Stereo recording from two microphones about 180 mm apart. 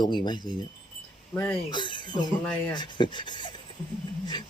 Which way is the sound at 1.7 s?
25° left (ahead or behind).